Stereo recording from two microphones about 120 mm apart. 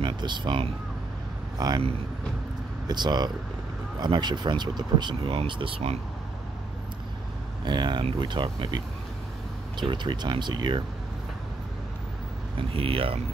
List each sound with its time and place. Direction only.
0.0 s speech: 40° right (ahead or behind)
1.6 s speech: 35° right (ahead or behind)
2.9 s speech: 35° right (ahead or behind); by 5.9 s 55° right (ahead or behind)
7.6 s speech: 40° right (ahead or behind)
12.5 s speech: 50° right (ahead or behind)